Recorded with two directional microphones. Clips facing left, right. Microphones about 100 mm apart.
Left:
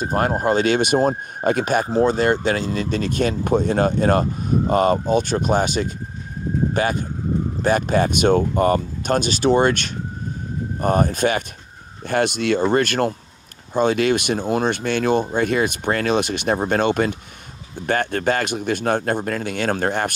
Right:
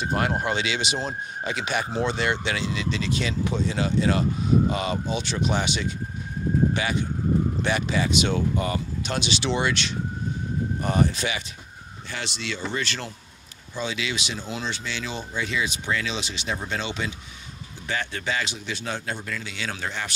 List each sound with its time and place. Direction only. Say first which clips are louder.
0.0 s speech: left 5 dB; 40° left (ahead or behind)